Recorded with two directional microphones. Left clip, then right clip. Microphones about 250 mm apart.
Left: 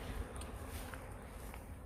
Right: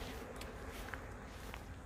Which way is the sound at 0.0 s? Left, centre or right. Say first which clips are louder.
Right 1 dB; left.